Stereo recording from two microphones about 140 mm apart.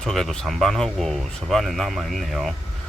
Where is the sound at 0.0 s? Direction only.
Centre (ahead or behind).